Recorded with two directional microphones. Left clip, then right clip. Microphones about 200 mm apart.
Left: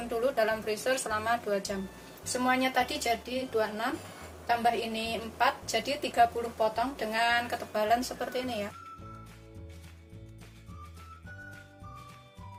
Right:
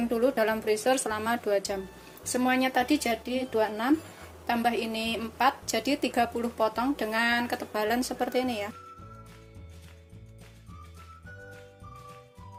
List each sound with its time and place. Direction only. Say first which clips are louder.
0.2 s a woman's voice: right 1 dB; 40° right (ahead or behind)